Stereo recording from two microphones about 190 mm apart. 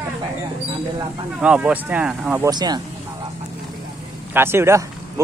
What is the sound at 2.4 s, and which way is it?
Speech, 20° right (ahead or behind).